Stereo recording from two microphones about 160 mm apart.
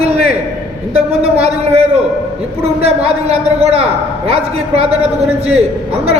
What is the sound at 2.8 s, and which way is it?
A man's voice, 40° right (ahead or behind).